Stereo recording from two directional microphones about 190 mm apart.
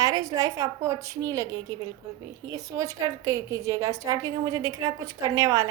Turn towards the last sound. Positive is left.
turn(degrees=-15)  # may be behind; listen again after turning